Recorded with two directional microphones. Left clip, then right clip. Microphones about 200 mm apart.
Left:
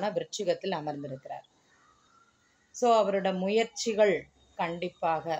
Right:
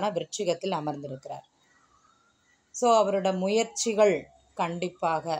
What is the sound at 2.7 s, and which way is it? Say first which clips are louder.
Speech: right 2 dB; 30° right (ahead or behind).